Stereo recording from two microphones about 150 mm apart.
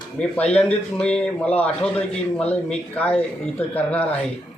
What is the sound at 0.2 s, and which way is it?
A man's voice, 10° left (ahead or behind).